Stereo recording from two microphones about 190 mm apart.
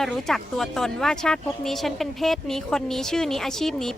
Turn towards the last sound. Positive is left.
turn(degrees=0)  # may be behind; listen again after turning